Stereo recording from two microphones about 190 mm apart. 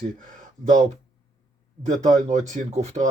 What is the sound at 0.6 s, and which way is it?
Speech, 40° right (ahead or behind).